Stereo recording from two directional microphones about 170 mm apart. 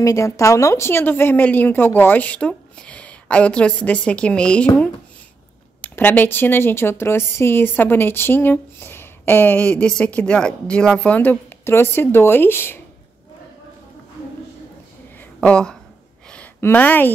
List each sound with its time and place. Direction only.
0.0 s a woman's voice: 20° left (ahead or behind)
5.8 s a woman's voice: 10° left (ahead or behind)
15.1 s a sound: 5° left (ahead or behind)